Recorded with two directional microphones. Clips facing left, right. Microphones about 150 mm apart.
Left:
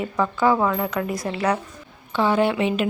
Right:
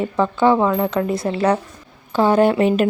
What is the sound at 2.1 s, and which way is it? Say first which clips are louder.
Speech: right 5 dB; 40° right (ahead or behind).